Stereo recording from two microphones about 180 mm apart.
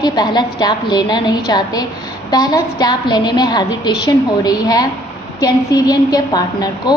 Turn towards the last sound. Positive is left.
turn(degrees=20)  # may be behind; listen again after turning